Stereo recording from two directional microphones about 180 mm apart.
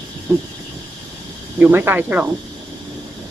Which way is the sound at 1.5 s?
10° right (ahead or behind).